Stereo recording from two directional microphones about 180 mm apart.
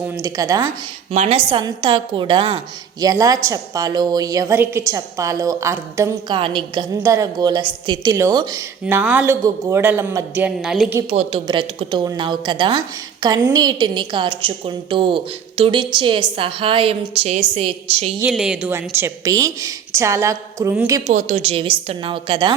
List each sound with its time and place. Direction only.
0.2 s a woman's voice: 20° right (ahead or behind)
1.1 s a woman's voice: 35° right (ahead or behind)
3.0 s a woman's voice: 20° right (ahead or behind)
6.3 s a woman's voice: 25° right (ahead or behind)
10.4 s a woman's voice: centre (ahead or behind)
11.1 s a woman's voice: 30° right (ahead or behind)
18.2 s a woman's voice: 5° right (ahead or behind)
21.1 s a woman's voice: 40° right (ahead or behind)